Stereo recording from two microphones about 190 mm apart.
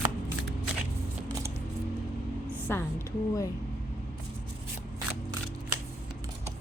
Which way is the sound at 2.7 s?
15° left (ahead or behind).